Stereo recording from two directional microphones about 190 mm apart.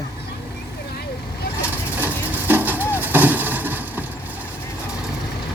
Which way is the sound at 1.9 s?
10° right (ahead or behind).